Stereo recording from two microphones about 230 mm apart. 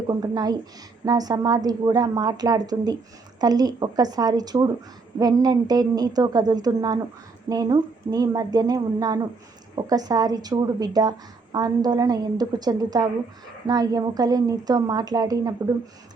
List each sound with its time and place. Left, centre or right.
0.1 s a woman's voice: centre